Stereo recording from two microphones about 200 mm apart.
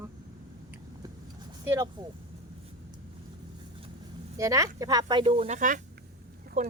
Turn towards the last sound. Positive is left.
turn(degrees=-40)  # may be behind; listen again after turning